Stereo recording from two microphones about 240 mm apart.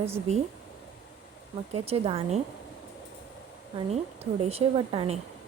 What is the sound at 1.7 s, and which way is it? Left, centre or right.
Speech, right.